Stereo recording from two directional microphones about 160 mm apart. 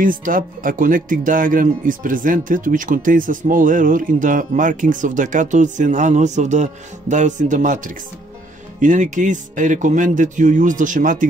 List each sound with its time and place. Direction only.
0.0 s speech: 60° right (ahead or behind)